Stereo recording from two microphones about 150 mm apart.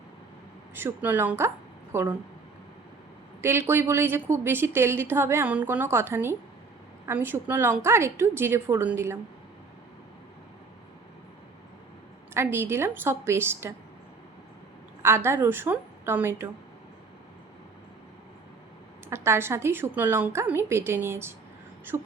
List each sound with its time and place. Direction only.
0.7 s a woman's voice: 15° right (ahead or behind)
3.4 s a woman's voice: 15° right (ahead or behind)
12.3 s a woman's voice: 15° right (ahead or behind)
15.0 s a woman's voice: 15° right (ahead or behind)
19.1 s a woman's voice: 15° right (ahead or behind)